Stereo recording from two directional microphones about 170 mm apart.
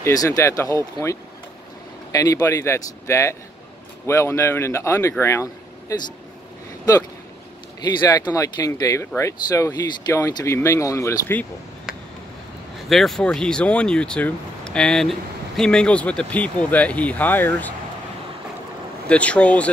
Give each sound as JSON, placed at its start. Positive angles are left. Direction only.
{"t": 0.0, "sound": "speech", "side_deg": 20}
{"t": 2.1, "sound": "speech", "side_deg": 20}
{"t": 7.8, "sound": "speech", "side_deg": 25}
{"t": 12.9, "sound": "speech", "side_deg": 0}
{"t": 19.0, "sound": "speech", "side_deg": 5}